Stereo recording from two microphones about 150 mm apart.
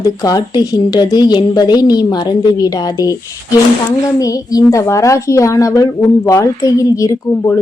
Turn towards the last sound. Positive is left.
turn(degrees=20)  # may be behind; listen again after turning